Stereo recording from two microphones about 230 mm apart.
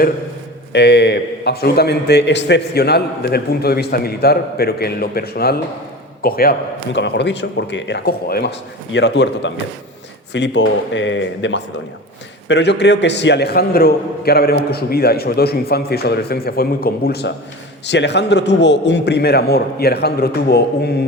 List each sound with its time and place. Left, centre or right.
0.7 s a man's voice: left